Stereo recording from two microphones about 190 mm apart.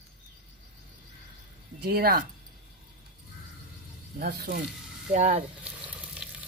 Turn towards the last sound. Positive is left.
turn(degrees=-5)  # may be behind; listen again after turning